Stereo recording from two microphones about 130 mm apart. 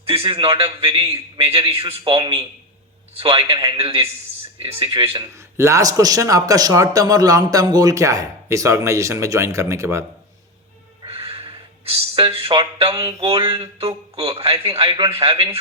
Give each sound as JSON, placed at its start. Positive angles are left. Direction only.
{"t": 0.0, "sound": "a man's voice", "side_deg": -45}
{"t": 3.8, "sound": "a man's voice", "side_deg": -45}
{"t": 5.3, "sound": "speech", "side_deg": -25}
{"t": 11.0, "sound": "a sound", "side_deg": -50}
{"t": 12.9, "sound": "speech", "side_deg": -30}
{"t": 13.2, "sound": "a man's voice", "side_deg": -45}